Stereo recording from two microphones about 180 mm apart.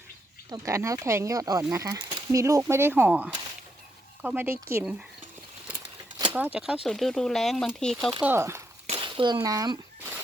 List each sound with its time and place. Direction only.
0.5 s speech: 15° right (ahead or behind)
6.3 s speech: 5° right (ahead or behind)
8.2 s speech: 15° right (ahead or behind)
8.9 s a sound: 30° right (ahead or behind)